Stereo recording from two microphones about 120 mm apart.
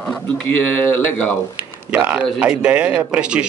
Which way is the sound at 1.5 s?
10° right (ahead or behind).